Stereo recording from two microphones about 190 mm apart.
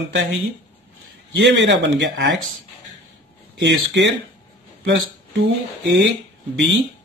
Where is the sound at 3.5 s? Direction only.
65° right (ahead or behind).